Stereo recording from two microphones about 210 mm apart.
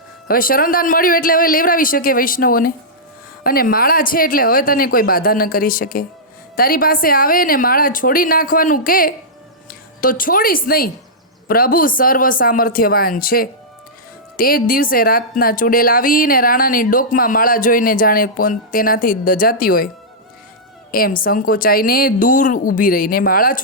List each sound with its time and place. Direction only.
0.3 s speech: 45° left (ahead or behind)
20.9 s speech: 45° left (ahead or behind)